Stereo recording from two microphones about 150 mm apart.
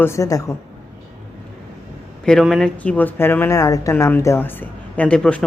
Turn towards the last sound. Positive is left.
turn(degrees=5)  # may be behind; listen again after turning